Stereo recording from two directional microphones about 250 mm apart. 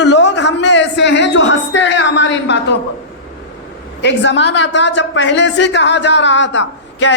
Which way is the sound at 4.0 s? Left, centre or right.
Left.